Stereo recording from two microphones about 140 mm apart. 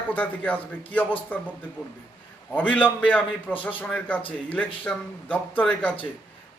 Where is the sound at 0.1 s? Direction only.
10° left (ahead or behind).